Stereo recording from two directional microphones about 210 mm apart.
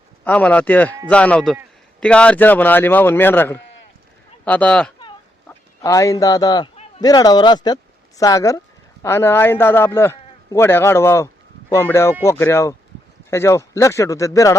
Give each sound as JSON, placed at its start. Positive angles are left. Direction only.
{"t": 0.3, "sound": "speech", "side_deg": 5}
{"t": 5.5, "sound": "speech", "side_deg": 15}